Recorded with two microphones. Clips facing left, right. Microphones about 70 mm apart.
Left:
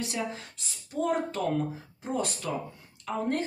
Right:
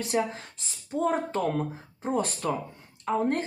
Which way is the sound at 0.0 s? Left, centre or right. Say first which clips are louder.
Right 5 dB; right.